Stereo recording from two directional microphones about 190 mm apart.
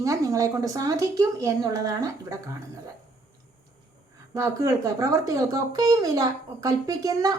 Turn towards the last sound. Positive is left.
turn(degrees=-20)  # may be behind; listen again after turning